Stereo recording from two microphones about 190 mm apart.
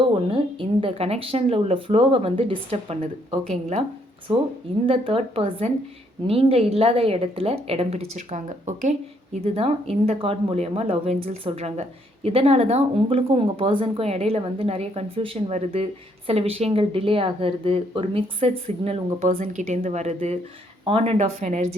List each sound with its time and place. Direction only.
0.0 s a woman's voice: 25° right (ahead or behind)
19.3 s a woman's voice: 45° right (ahead or behind)